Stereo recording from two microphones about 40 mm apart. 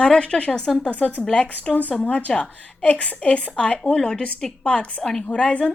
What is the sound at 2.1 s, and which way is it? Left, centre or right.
A woman's voice, left.